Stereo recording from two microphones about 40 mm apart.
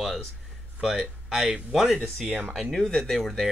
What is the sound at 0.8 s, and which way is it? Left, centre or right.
Speech, centre.